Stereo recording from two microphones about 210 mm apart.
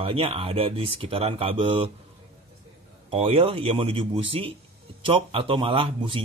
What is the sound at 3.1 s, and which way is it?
Speech, 25° right (ahead or behind).